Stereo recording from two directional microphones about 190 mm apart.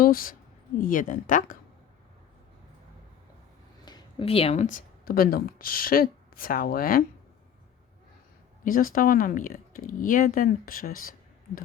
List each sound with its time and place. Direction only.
0.0 s a woman's voice: 45° left (ahead or behind)
3.8 s speech: 25° left (ahead or behind); by 7.0 s 50° left (ahead or behind)
8.6 s speech: 50° left (ahead or behind)